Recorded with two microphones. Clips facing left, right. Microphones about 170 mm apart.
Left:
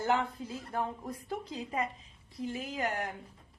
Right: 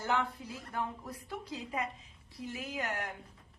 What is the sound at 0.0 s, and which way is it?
Speech, 45° left (ahead or behind).